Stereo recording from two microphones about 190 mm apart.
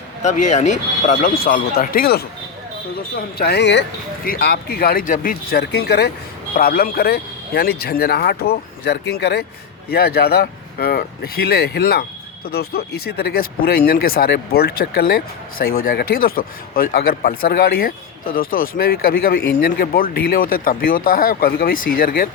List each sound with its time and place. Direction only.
0.2 s speech: 40° left (ahead or behind); by 3.8 s 65° left (ahead or behind)
4.3 s speech: 50° left (ahead or behind)